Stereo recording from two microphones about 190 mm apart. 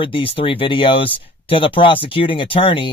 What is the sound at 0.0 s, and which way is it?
Speech, 30° left (ahead or behind).